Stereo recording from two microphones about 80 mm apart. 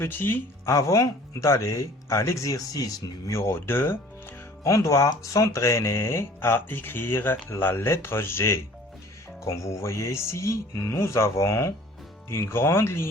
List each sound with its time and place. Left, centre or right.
0.0 s speech: left
0.6 s speech: left
4.6 s speech: left